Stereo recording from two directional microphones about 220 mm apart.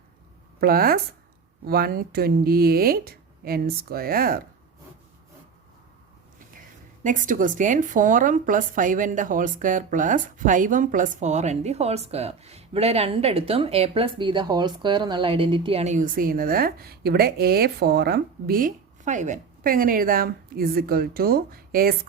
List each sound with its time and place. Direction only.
0.6 s speech: 40° right (ahead or behind)
7.0 s speech: 35° right (ahead or behind)